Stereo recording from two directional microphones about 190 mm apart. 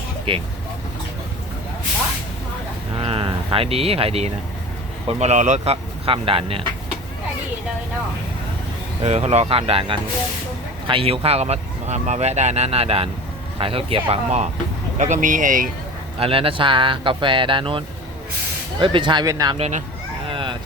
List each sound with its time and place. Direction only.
0.3 s speech: 25° right (ahead or behind)
3.0 s speech: 30° right (ahead or behind)
9.0 s speech: 35° right (ahead or behind)
16.1 s speech: 30° right (ahead or behind)
19.5 s speech: 35° right (ahead or behind)
20.2 s a sound: 25° right (ahead or behind)